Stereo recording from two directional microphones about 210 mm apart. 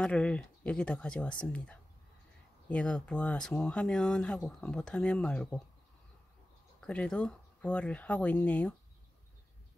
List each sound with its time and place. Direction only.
0.0 s speech: 5° left (ahead or behind)
6.8 s speech: 5° left (ahead or behind)